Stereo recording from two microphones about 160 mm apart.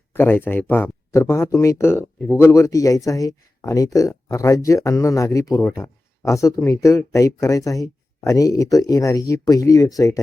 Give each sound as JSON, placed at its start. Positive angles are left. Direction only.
{"t": 0.1, "sound": "speech", "side_deg": 15}